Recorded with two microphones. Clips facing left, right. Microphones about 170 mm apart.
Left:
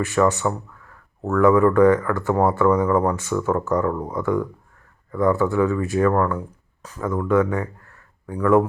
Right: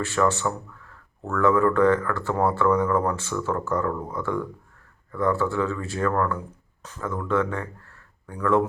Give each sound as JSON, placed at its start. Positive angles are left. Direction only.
{"t": 0.0, "sound": "speech", "side_deg": 15}